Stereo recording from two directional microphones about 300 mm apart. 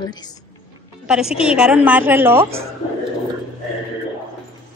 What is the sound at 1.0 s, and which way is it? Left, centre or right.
A woman's voice, centre.